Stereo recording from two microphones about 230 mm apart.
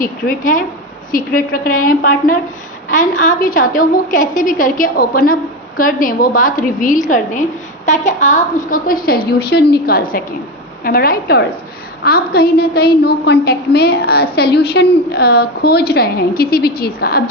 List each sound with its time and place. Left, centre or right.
0.0 s a woman's voice: left